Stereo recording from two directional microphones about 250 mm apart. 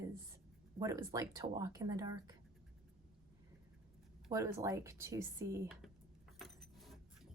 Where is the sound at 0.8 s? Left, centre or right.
Centre.